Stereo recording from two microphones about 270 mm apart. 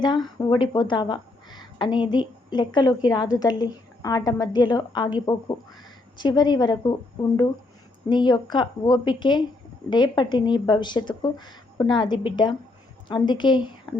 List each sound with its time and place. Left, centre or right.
0.0 s a woman's voice: centre
8.1 s a woman's voice: centre